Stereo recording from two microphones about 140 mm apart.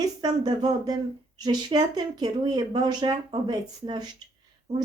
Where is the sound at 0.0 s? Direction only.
30° right (ahead or behind).